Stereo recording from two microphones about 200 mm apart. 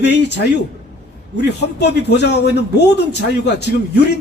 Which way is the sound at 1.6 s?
55° left (ahead or behind).